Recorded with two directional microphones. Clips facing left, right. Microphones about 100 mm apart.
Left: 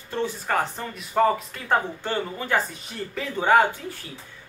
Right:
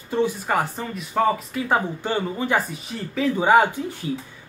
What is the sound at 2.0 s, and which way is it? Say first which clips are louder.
Speech: right 3 dB; 15° right (ahead or behind).